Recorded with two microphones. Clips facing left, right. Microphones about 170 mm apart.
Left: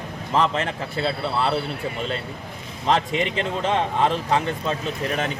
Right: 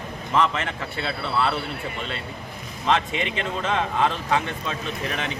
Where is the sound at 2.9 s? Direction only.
35° left (ahead or behind).